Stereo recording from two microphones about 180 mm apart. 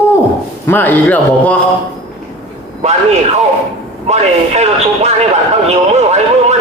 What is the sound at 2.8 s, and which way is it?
Speech, 40° right (ahead or behind).